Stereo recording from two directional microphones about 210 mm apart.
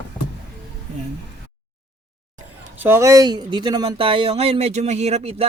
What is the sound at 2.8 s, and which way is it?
Speech, 10° right (ahead or behind).